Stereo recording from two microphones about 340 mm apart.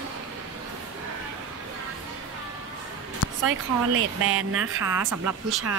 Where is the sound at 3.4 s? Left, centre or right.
Right.